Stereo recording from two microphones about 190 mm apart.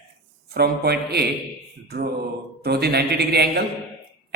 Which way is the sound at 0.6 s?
55° right (ahead or behind).